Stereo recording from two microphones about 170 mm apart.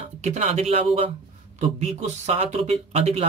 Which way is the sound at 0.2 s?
40° right (ahead or behind).